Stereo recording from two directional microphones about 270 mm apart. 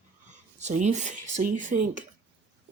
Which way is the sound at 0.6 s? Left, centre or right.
Right.